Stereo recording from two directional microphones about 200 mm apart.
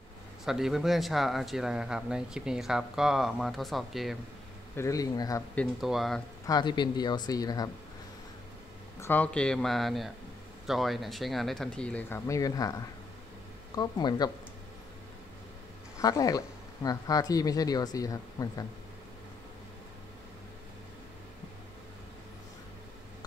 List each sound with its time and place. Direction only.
0.5 s speech: centre (ahead or behind)
4.7 s speech: 15° left (ahead or behind)
5.5 s speech: centre (ahead or behind)
6.4 s speech: 20° left (ahead or behind)
9.0 s speech: 10° left (ahead or behind)
16.0 s speech: 20° left (ahead or behind)